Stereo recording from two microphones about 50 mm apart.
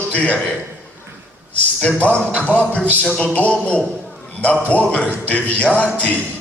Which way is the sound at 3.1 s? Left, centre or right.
Centre.